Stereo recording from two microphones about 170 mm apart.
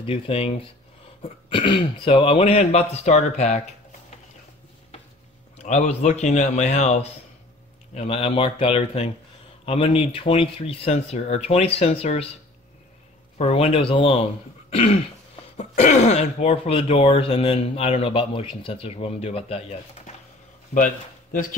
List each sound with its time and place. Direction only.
0.0 s speech: 35° left (ahead or behind)
5.6 s a man's voice: 40° left (ahead or behind)
13.4 s speech: 35° left (ahead or behind)
20.7 s speech: 50° left (ahead or behind)